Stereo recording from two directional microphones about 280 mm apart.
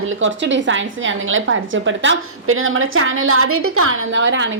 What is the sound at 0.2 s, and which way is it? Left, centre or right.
A woman's voice, right.